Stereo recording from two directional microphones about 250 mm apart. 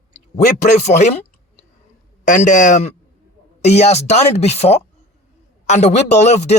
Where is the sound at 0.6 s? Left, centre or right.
Left.